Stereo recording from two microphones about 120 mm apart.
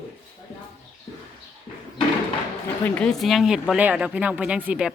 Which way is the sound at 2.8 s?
10° left (ahead or behind).